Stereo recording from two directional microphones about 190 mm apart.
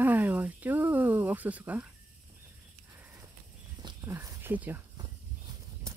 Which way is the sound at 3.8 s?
15° right (ahead or behind).